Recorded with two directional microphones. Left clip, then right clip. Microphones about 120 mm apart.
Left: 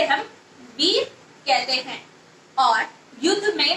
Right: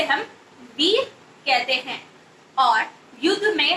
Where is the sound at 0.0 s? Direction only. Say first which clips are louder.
Left 1 dB; 25° left (ahead or behind).